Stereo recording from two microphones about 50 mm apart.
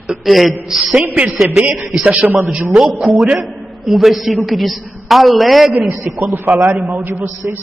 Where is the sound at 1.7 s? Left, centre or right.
Centre.